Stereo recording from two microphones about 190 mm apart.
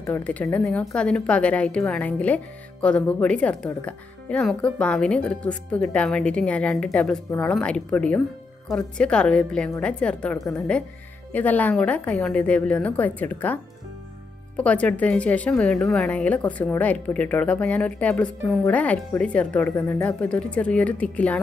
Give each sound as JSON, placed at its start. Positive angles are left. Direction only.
{"t": 0.0, "sound": "speech", "side_deg": 10}
{"t": 14.6, "sound": "speech", "side_deg": 5}